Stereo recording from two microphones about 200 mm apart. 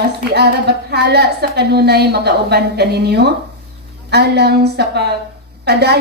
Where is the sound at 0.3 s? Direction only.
55° right (ahead or behind).